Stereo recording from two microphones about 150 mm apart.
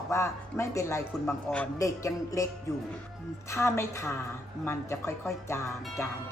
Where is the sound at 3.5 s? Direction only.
20° left (ahead or behind).